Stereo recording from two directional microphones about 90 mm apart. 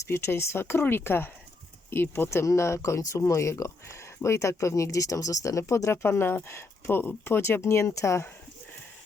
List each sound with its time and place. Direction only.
0.1 s speech: 30° left (ahead or behind)